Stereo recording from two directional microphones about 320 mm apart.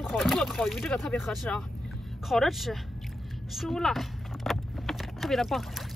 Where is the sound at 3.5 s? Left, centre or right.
Centre.